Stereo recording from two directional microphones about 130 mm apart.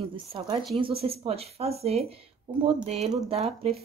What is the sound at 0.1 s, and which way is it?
Speech, 40° right (ahead or behind).